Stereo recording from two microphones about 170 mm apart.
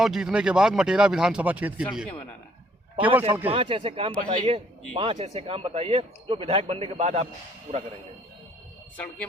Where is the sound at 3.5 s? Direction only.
30° right (ahead or behind).